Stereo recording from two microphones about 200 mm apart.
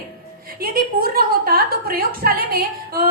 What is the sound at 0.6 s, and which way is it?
A woman's voice, 45° right (ahead or behind).